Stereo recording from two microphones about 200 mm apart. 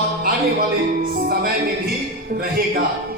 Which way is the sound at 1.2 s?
45° right (ahead or behind).